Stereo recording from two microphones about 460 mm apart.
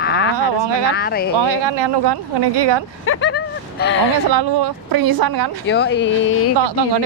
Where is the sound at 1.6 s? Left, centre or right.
Right.